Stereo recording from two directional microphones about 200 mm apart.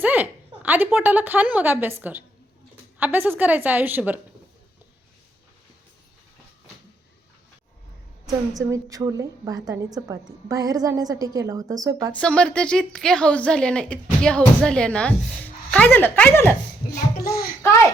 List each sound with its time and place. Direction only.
0.0 s a woman's voice: 10° right (ahead or behind)
8.5 s a woman's voice: 15° right (ahead or behind)
12.1 s a woman's voice: 5° left (ahead or behind)
16.9 s a child's voice: 50° left (ahead or behind)